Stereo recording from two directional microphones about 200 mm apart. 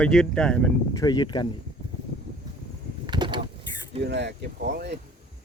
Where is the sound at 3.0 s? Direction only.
20° right (ahead or behind).